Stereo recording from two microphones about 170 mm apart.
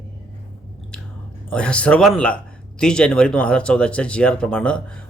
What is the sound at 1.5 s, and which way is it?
Speech, 5° left (ahead or behind).